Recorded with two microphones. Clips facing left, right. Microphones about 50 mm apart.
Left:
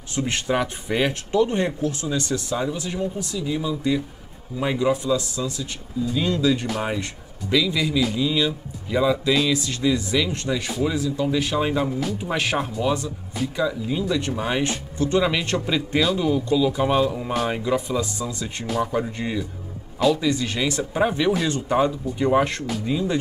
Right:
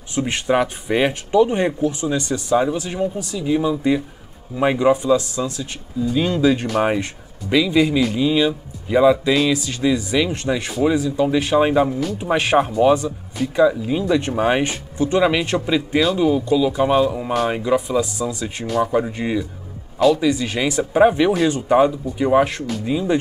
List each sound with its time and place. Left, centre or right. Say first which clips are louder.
0.1 s speech: right 4 dB; centre